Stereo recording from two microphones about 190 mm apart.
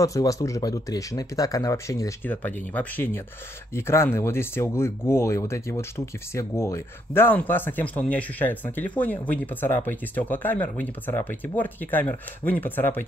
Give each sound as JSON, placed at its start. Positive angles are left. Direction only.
{"t": 0.0, "sound": "speech", "side_deg": 15}